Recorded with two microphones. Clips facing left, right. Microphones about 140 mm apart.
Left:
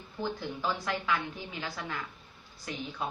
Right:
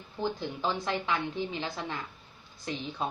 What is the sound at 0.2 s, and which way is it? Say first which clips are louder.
Speech: right 2 dB; 20° right (ahead or behind).